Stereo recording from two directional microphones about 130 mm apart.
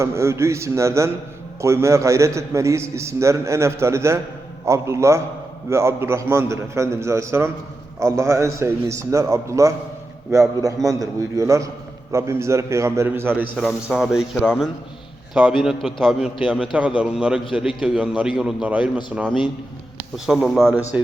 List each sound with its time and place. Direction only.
0.0 s a man's voice: 20° right (ahead or behind)
10.8 s a man's voice: 25° right (ahead or behind)
13.6 s a man's voice: centre (ahead or behind)
20.1 s a man's voice: 5° right (ahead or behind)